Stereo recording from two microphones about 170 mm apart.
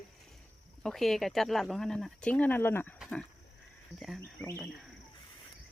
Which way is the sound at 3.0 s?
5° left (ahead or behind).